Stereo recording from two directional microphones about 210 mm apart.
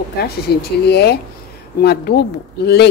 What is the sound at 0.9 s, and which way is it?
Speech, 50° left (ahead or behind).